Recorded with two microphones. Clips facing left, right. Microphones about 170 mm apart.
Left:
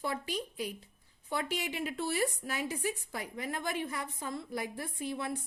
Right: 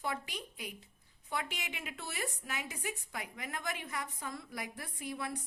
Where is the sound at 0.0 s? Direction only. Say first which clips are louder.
Left 4 dB; 35° left (ahead or behind).